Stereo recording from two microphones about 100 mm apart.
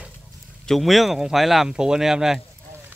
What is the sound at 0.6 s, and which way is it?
Speech, centre (ahead or behind).